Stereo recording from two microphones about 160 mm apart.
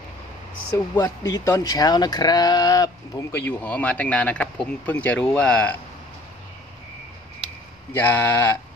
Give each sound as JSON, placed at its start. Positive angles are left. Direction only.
{"t": 0.7, "sound": "speech", "side_deg": 20}
{"t": 7.9, "sound": "speech", "side_deg": 15}